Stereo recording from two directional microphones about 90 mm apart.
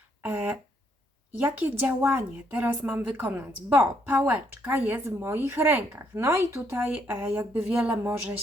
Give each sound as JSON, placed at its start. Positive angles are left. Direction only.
{"t": 0.2, "sound": "a sound", "side_deg": -20}
{"t": 1.4, "sound": "a woman's voice", "side_deg": -20}
{"t": 8.0, "sound": "a woman's voice", "side_deg": -25}